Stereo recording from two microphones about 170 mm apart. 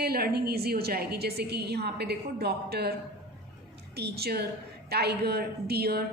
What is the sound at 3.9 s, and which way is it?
A woman's voice, 70° right (ahead or behind).